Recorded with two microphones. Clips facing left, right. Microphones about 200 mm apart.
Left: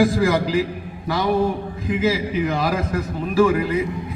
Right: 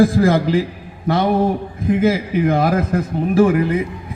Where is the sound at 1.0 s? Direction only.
55° right (ahead or behind).